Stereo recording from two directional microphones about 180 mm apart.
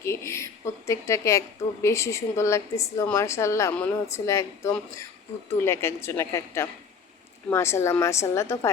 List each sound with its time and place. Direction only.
0.0 s a woman's voice: 15° left (ahead or behind)